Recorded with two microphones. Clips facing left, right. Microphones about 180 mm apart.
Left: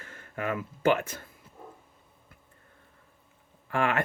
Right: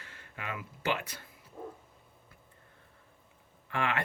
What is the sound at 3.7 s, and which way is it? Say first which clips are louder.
Speech: left 5 dB; 45° left (ahead or behind).